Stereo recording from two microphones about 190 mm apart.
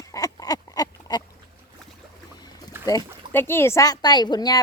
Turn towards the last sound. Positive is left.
turn(degrees=20)  # may be behind; listen again after turning